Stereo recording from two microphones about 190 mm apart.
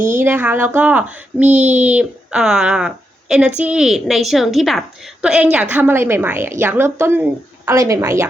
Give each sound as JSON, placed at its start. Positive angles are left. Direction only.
{"t": 0.2, "sound": "a woman's voice", "side_deg": -10}